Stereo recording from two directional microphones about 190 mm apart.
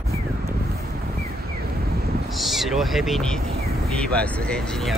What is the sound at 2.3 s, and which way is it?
Speech, centre (ahead or behind).